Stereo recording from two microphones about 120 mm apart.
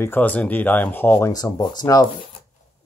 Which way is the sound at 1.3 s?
35° left (ahead or behind).